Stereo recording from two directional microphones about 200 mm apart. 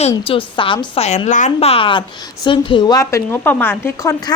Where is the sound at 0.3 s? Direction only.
25° left (ahead or behind).